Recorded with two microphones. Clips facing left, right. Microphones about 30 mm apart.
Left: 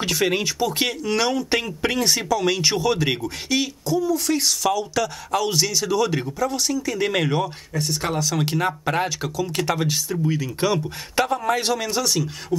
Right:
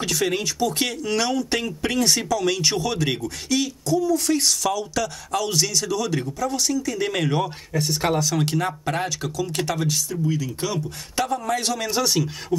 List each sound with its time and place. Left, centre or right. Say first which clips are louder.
0.0 s speech: left 2 dB; centre
7.4 s speech: right 1 dB; centre
11.8 s speech: right 1 dB; centre